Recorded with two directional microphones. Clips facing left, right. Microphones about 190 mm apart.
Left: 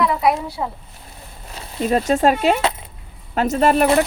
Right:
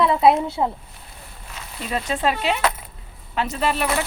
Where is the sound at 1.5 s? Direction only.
45° left (ahead or behind).